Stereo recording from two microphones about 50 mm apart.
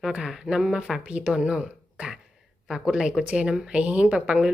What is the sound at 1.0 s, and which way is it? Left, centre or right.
Speech, right.